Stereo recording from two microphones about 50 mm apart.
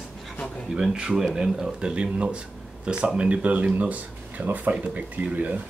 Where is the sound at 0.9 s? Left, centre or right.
Centre.